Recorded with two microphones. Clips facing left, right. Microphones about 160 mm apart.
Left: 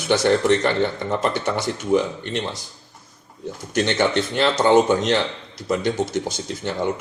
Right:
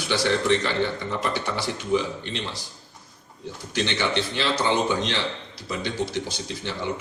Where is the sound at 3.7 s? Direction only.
50° left (ahead or behind).